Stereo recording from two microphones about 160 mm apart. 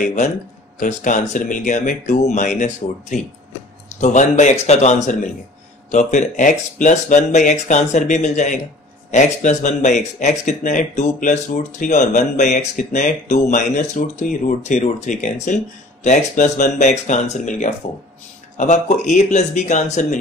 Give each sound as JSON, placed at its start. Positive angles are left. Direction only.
{"t": 0.0, "sound": "speech", "side_deg": 50}